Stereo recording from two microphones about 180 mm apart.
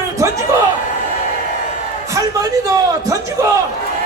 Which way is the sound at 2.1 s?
20° right (ahead or behind).